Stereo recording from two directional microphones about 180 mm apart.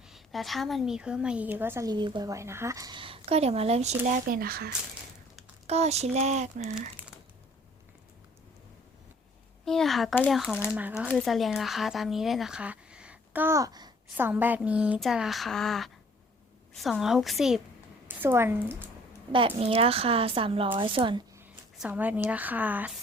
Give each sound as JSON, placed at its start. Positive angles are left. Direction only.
{"t": 0.1, "sound": "a woman's voice", "side_deg": 0}
{"t": 5.6, "sound": "speech", "side_deg": -35}
{"t": 9.6, "sound": "a woman's voice", "side_deg": 0}
{"t": 14.2, "sound": "speech", "side_deg": -10}
{"t": 18.2, "sound": "a woman's voice", "side_deg": -10}
{"t": 19.3, "sound": "speech", "side_deg": -30}
{"t": 21.8, "sound": "a woman's voice", "side_deg": -10}